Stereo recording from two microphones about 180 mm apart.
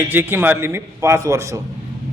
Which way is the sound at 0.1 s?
10° right (ahead or behind).